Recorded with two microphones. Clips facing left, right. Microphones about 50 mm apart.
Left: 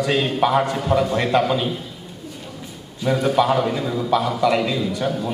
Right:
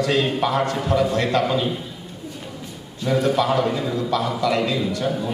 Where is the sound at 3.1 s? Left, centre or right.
Centre.